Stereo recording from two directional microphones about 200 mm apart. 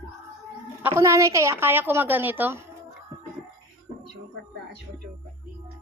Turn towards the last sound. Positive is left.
turn(degrees=-30)  # may be behind; listen again after turning